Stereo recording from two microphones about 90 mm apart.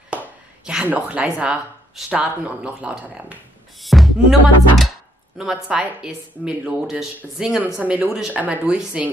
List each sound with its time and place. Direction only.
0.8 s speech: 15° right (ahead or behind)
3.8 s music: centre (ahead or behind)
5.4 s speech: 10° right (ahead or behind)
7.8 s speech: 15° right (ahead or behind)